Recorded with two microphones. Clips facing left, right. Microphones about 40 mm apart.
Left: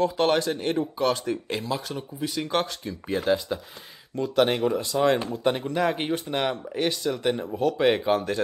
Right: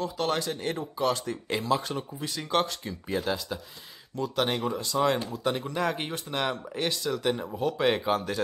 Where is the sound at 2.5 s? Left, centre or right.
Centre.